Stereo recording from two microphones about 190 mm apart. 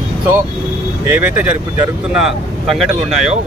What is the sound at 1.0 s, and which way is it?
Speech, 10° right (ahead or behind).